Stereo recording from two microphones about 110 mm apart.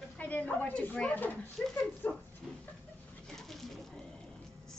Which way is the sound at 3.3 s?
Centre (ahead or behind).